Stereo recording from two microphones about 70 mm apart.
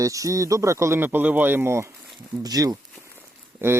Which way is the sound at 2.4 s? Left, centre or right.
Right.